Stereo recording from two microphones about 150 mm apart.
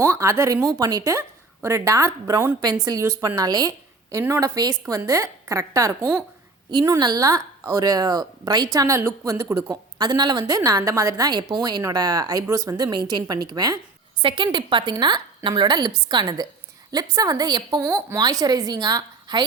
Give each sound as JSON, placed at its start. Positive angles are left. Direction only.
{"t": 0.0, "sound": "a woman's voice", "side_deg": -20}